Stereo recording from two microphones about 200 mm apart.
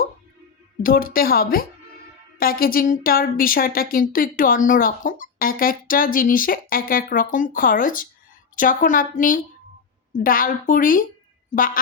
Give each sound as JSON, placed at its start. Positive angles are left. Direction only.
{"t": 0.8, "sound": "speech", "side_deg": 45}